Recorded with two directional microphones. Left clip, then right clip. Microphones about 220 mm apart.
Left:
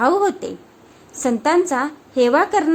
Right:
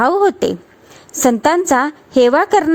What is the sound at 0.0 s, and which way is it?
A woman's voice, 35° right (ahead or behind).